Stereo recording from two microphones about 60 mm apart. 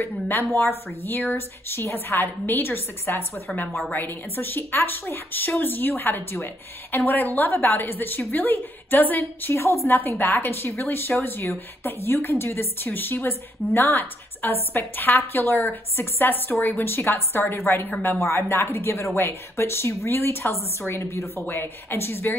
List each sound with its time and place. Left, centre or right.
0.0 s speech: left
3.4 s speech: left
9.5 s speech: left
9.9 s speech: left
21.4 s speech: left